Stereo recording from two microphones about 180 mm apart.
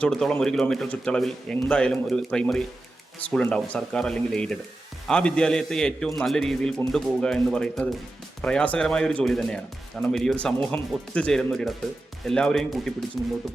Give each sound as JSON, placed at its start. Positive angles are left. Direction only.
{"t": 0.0, "sound": "a man's voice", "side_deg": 5}